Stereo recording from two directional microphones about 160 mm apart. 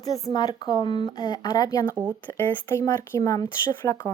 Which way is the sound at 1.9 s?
10° right (ahead or behind).